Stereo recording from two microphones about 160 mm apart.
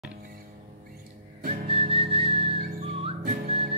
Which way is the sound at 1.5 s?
35° right (ahead or behind).